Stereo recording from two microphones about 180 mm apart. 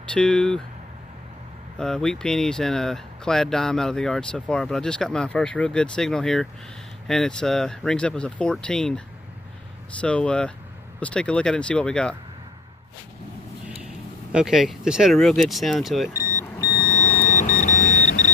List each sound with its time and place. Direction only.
0.1 s speech: 5° left (ahead or behind)
1.8 s speech: 5° left (ahead or behind)
14.3 s speech: centre (ahead or behind)
16.3 s vehicle: 15° left (ahead or behind)
16.9 s a sound: 35° left (ahead or behind)